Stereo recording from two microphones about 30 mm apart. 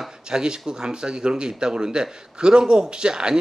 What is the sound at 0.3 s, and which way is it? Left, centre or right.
Speech, right.